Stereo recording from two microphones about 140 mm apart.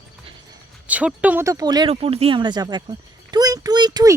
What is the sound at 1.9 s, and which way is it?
Speech, 45° right (ahead or behind).